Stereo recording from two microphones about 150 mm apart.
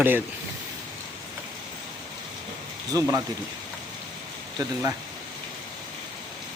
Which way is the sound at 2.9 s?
20° right (ahead or behind).